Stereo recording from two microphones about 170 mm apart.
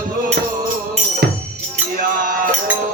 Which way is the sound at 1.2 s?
65° right (ahead or behind).